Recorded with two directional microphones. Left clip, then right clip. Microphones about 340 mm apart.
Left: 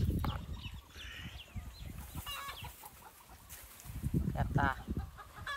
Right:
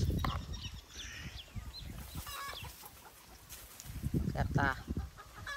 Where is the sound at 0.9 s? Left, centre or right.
Centre.